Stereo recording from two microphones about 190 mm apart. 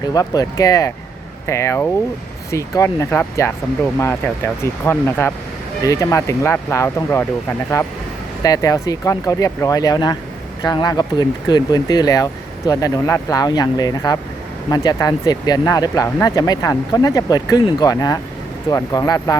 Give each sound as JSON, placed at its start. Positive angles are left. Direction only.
{"t": 0.1, "sound": "speech", "side_deg": 20}
{"t": 8.4, "sound": "speech", "side_deg": 20}